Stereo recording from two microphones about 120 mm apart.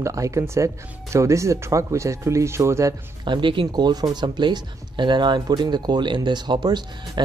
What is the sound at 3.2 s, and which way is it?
Speech, 40° right (ahead or behind).